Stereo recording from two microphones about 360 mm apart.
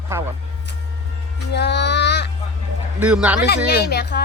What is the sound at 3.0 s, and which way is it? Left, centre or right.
Speech, centre.